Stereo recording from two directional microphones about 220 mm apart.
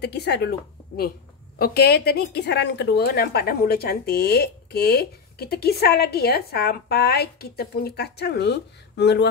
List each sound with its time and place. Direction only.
0.0 s a woman's voice: 50° left (ahead or behind)